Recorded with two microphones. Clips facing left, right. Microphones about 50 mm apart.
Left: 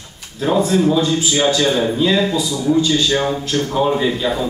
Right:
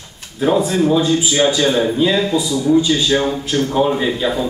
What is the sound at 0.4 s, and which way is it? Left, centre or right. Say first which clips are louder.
A man's voice: even; centre.